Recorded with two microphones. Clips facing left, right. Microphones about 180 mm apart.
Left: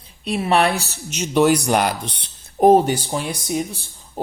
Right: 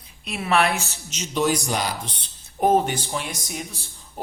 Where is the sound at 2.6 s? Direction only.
35° left (ahead or behind).